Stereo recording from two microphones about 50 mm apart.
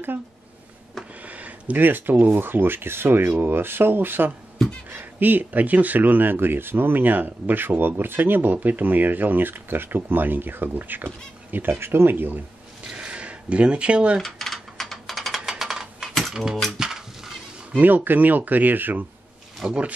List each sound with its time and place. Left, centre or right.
1.2 s speech: right
11.8 s speech: right
12.8 s a sound: right
14.2 s mechanisms: centre
15.5 s a sound: centre
16.2 s mechanisms: centre
16.7 s a sound: centre
17.7 s speech: right
19.6 s speech: centre